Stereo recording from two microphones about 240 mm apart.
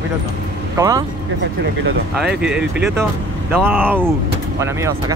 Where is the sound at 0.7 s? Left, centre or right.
Centre.